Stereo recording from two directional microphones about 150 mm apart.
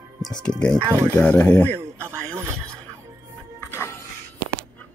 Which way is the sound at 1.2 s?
5° left (ahead or behind).